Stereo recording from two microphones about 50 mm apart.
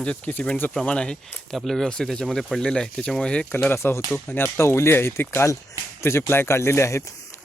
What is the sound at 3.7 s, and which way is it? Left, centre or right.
Speech, left.